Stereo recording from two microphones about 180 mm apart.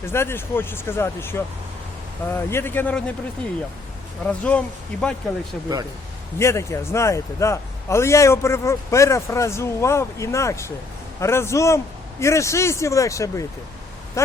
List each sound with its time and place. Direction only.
0.0 s a man's voice: 15° left (ahead or behind)
4.3 s a man's voice: 5° left (ahead or behind)
6.4 s a man's voice: 15° left (ahead or behind)